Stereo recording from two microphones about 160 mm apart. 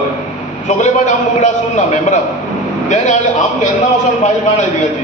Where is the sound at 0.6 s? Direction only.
45° left (ahead or behind).